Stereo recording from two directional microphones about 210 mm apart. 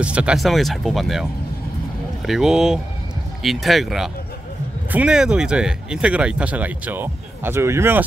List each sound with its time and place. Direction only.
0.0 s speech: 5° right (ahead or behind)
2.2 s speech: centre (ahead or behind)